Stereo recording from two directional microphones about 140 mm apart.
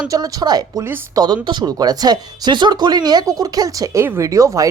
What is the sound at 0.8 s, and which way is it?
Speech, 15° right (ahead or behind).